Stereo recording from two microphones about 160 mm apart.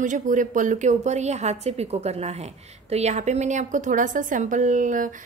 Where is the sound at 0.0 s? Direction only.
55° right (ahead or behind).